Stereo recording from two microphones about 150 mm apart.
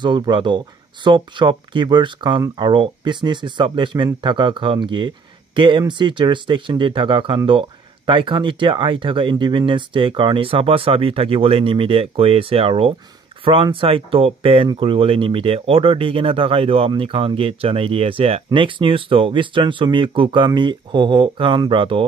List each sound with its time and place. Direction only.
0.0 s speech: 30° right (ahead or behind)